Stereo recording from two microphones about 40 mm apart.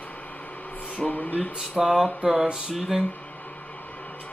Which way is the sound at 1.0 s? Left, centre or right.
Centre.